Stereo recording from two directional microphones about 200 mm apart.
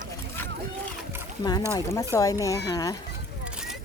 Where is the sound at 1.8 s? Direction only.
15° left (ahead or behind).